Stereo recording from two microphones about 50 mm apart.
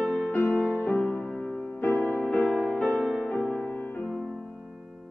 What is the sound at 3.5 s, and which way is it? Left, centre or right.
Music, left.